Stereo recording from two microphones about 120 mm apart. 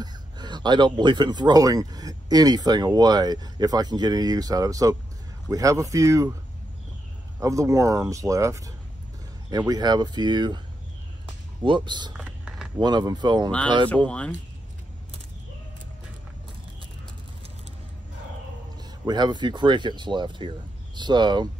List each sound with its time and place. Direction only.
0.0 s a sound: 35° right (ahead or behind)
1.0 s speech: 40° right (ahead or behind)
7.3 s speech: 25° right (ahead or behind)
11.6 s speech: 40° right (ahead or behind)
12.2 s a sound: 10° right (ahead or behind)
12.8 s speech: 35° right (ahead or behind)
13.8 s speech: 10° left (ahead or behind)
19.0 s speech: 35° right (ahead or behind)